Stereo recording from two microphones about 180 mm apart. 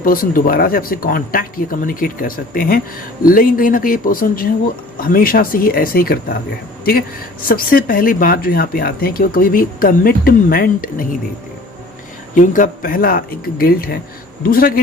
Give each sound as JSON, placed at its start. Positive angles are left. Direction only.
{"t": 0.0, "sound": "speech", "side_deg": 50}
{"t": 7.4, "sound": "speech", "side_deg": 50}
{"t": 12.3, "sound": "speech", "side_deg": 45}